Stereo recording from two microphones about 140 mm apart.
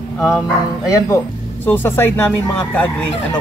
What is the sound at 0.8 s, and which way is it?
Speech, 25° left (ahead or behind).